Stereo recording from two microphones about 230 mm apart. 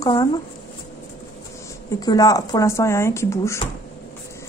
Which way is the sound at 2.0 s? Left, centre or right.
Centre.